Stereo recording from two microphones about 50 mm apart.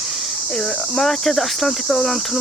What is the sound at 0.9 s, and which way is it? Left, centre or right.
Speech, centre.